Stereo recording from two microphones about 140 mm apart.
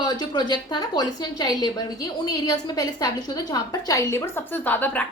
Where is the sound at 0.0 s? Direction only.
30° left (ahead or behind).